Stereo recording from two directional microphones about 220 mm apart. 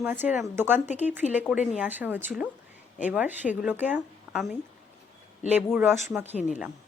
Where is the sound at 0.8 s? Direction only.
30° left (ahead or behind).